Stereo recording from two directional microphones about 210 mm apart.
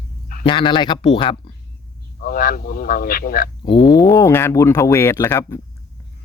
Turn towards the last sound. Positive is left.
turn(degrees=15)  # may be behind; listen again after turning